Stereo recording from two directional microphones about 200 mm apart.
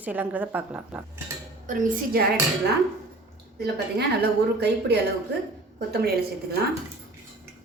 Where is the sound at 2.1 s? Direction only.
50° right (ahead or behind).